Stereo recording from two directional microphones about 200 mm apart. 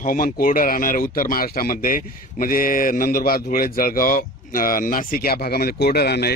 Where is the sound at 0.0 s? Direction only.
45° left (ahead or behind).